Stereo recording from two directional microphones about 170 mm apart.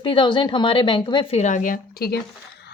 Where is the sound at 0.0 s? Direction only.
30° left (ahead or behind).